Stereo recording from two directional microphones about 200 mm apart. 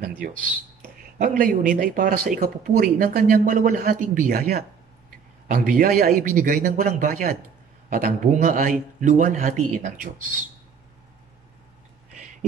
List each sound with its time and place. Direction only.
1.1 s a man's voice: 45° right (ahead or behind)